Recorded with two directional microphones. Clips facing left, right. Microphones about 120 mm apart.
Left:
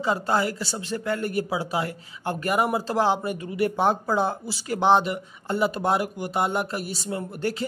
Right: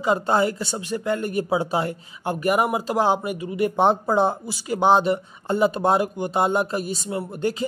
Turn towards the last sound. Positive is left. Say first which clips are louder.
# right 3 dB
turn(degrees=-25)  # may be behind; listen again after turning